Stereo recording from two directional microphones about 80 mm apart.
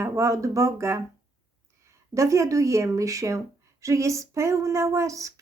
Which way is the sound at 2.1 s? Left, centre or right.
Right.